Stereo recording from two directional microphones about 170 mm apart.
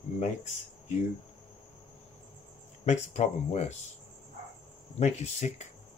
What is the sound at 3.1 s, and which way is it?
Speech, 40° left (ahead or behind).